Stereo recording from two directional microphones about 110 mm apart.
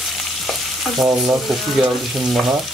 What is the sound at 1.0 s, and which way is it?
Frying, centre (ahead or behind).